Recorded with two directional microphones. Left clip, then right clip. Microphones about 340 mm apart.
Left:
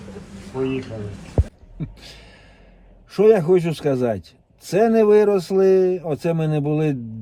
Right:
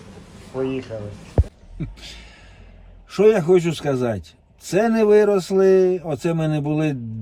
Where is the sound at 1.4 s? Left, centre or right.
Centre.